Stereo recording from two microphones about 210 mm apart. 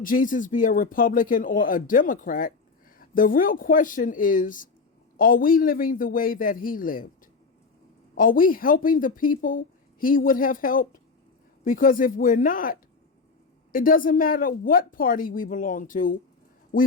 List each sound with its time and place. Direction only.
0.0 s a woman's voice: 40° left (ahead or behind)
8.1 s a woman's voice: 40° left (ahead or behind)
13.7 s a woman's voice: 40° left (ahead or behind)